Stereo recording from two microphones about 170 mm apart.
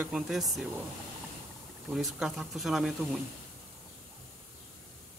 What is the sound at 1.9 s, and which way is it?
Speech, centre (ahead or behind).